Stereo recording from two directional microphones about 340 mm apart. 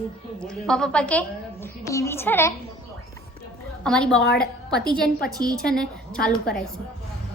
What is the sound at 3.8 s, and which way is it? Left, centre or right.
Speech, centre.